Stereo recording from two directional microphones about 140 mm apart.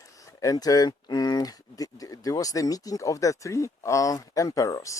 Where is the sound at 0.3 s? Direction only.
25° left (ahead or behind).